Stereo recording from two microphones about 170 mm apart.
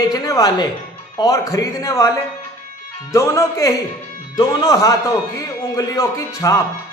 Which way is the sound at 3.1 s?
15° left (ahead or behind).